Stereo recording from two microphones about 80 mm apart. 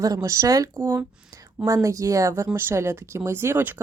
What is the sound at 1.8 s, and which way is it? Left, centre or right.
Speech, right.